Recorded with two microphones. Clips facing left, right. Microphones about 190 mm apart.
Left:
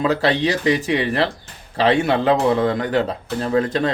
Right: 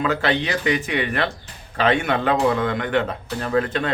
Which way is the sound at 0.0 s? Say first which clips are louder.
Left 3 dB; 35° left (ahead or behind).